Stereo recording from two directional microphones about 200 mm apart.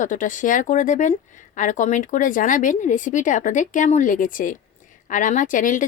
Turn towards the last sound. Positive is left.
turn(degrees=40)  # may be behind; listen again after turning